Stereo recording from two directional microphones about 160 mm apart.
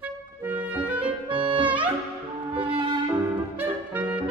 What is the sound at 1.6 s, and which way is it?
Music, 10° right (ahead or behind).